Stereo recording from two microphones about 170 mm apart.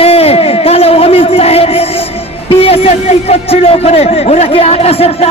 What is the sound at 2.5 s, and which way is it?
A man's voice, 35° left (ahead or behind).